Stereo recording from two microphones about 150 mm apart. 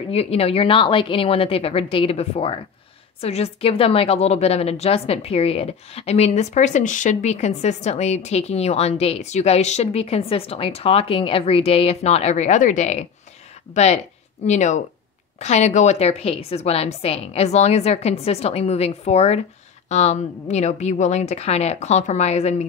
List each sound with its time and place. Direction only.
0.1 s a woman's voice: 40° left (ahead or behind)